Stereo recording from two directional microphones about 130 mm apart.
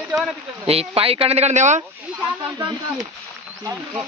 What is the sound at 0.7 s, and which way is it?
Speech, 50° right (ahead or behind).